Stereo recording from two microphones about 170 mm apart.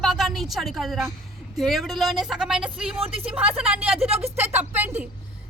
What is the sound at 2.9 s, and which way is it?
Speech, 35° right (ahead or behind).